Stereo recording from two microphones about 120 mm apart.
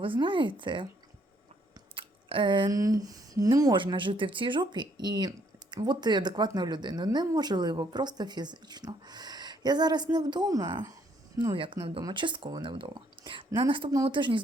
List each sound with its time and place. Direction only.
0.0 s speech: 45° right (ahead or behind)
2.0 s a sound: 45° right (ahead or behind)
2.7 s speech: 30° right (ahead or behind)